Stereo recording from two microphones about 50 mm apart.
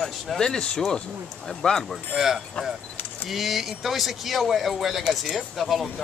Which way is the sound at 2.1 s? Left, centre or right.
Centre.